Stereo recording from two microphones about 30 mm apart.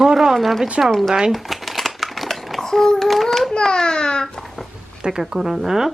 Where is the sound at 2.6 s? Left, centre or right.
Centre.